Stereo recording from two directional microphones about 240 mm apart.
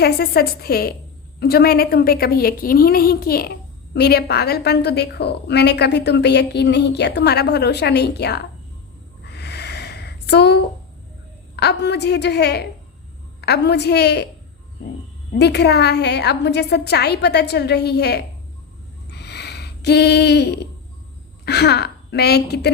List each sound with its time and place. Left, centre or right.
0.0 s a woman's voice: left
9.2 s a sound: left
11.5 s a woman's voice: left
15.3 s a woman's voice: left
19.1 s a sound: left
21.4 s a woman's voice: left